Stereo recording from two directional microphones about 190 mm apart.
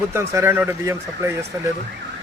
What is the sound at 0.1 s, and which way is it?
A man's voice, 15° right (ahead or behind).